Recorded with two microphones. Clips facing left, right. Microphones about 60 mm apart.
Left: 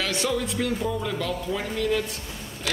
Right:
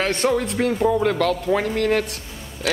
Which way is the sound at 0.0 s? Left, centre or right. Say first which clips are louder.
Right 6 dB; right.